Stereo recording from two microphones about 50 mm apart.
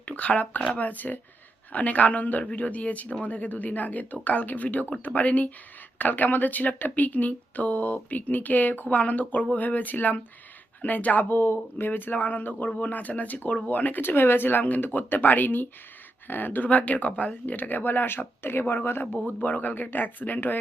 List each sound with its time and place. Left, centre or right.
0.0 s speech: left
11.9 s speech: left
19.2 s speech: left